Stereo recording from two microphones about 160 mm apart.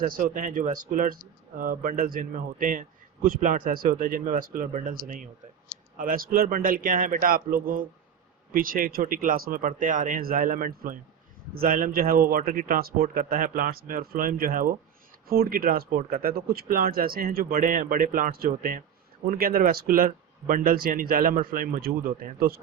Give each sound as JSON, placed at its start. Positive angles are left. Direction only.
{"t": 0.0, "sound": "speech", "side_deg": -60}